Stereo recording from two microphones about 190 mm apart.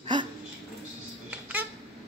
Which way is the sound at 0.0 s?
25° right (ahead or behind).